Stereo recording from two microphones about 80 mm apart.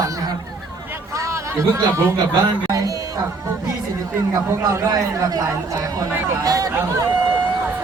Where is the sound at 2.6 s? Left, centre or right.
Right.